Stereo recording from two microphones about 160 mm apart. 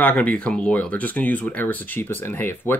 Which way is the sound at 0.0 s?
10° left (ahead or behind).